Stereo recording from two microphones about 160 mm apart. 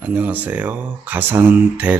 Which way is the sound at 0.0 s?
10° right (ahead or behind).